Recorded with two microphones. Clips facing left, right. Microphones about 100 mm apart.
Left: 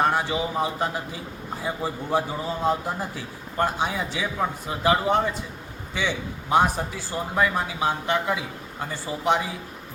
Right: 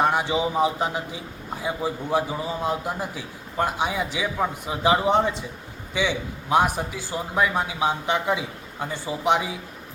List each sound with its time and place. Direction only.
0.0 s a man's voice: 15° right (ahead or behind)